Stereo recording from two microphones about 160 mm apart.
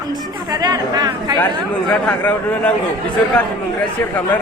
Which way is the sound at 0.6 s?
25° right (ahead or behind).